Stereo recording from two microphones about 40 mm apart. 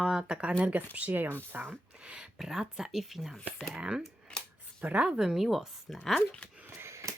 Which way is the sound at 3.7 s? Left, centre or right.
Right.